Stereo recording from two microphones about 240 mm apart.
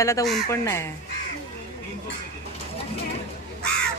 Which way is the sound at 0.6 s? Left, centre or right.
Centre.